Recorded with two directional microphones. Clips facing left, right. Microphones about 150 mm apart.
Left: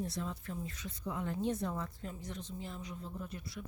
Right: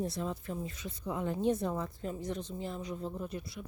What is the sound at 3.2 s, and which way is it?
Speech, 20° right (ahead or behind).